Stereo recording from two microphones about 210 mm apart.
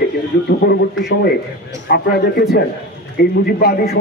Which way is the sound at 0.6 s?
50° left (ahead or behind).